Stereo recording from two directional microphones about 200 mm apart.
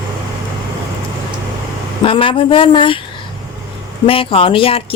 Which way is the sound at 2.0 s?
25° left (ahead or behind).